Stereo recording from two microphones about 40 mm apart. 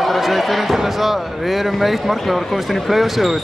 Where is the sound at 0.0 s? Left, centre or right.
Centre.